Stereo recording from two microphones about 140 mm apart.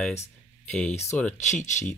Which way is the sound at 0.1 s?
55° left (ahead or behind).